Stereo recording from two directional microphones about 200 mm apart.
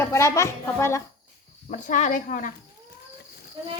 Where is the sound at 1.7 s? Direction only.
40° left (ahead or behind).